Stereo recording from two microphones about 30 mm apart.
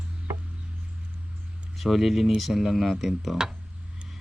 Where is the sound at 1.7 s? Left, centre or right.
Centre.